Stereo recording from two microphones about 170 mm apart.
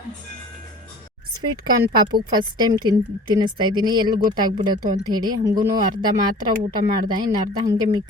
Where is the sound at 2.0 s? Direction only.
25° right (ahead or behind).